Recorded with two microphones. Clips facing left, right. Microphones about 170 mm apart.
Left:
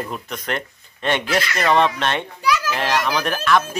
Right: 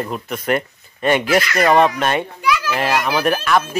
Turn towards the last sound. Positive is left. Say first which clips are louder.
# right 2 dB
turn(degrees=-5)  # may be behind; listen again after turning